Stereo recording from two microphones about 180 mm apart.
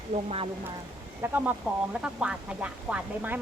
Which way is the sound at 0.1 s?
30° right (ahead or behind).